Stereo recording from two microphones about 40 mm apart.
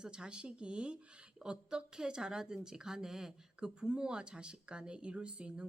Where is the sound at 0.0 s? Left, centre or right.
Right.